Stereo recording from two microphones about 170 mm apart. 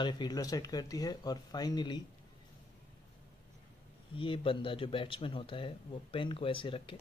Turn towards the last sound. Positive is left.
turn(degrees=30)  # may be behind; listen again after turning